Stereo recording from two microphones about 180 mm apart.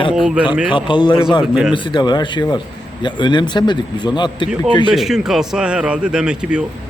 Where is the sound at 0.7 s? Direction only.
25° left (ahead or behind).